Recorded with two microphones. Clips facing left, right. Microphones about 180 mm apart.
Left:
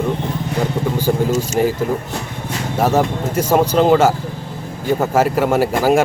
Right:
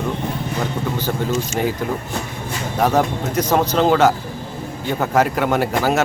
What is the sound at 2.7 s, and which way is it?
A man's voice, 5° left (ahead or behind).